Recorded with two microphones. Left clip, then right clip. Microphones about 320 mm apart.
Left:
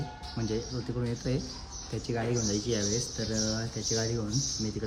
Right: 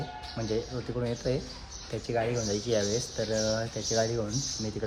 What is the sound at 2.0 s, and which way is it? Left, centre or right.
Speech, centre.